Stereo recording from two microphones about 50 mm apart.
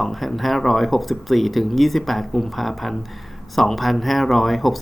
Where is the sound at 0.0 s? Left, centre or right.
Centre.